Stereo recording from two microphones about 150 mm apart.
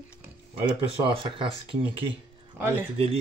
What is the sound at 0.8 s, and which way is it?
Speech, 35° right (ahead or behind).